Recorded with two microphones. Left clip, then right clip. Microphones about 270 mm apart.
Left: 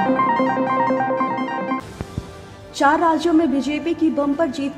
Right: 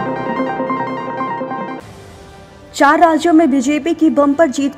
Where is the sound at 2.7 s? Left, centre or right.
Right.